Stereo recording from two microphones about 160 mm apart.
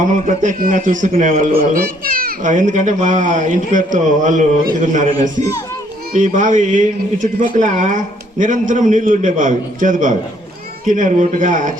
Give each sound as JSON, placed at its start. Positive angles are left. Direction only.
{"t": 0.0, "sound": "speech", "side_deg": -50}
{"t": 6.1, "sound": "speech", "side_deg": -55}